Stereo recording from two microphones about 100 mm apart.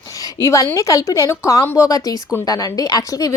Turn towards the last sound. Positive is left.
turn(degrees=35)  # may be behind; listen again after turning